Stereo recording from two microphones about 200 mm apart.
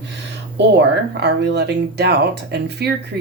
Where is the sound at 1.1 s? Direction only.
55° right (ahead or behind).